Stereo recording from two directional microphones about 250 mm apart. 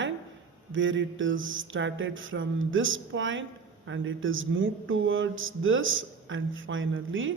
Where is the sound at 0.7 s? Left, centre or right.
Right.